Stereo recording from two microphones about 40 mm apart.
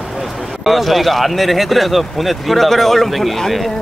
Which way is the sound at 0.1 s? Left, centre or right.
Centre.